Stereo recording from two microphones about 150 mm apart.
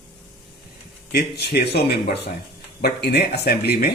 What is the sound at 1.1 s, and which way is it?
Speech, 90° left.